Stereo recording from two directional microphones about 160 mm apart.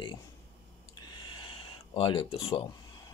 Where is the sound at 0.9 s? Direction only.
25° left (ahead or behind).